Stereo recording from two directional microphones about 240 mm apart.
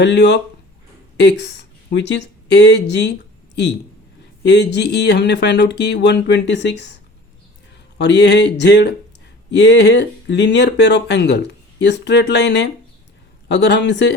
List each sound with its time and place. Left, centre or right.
0.0 s speech: left
4.4 s speech: left
7.9 s speech: left